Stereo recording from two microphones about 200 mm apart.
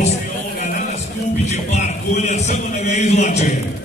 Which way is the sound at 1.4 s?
35° left (ahead or behind).